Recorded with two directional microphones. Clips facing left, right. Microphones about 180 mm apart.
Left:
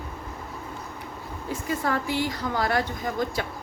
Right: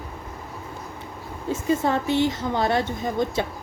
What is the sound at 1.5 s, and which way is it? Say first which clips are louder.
A woman's voice: right 5 dB; 25° right (ahead or behind).